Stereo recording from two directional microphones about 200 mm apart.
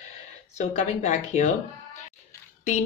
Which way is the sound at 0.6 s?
35° left (ahead or behind).